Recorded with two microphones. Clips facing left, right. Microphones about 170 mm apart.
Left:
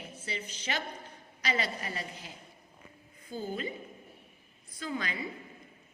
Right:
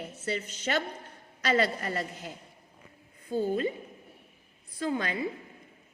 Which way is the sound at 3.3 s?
60° right (ahead or behind).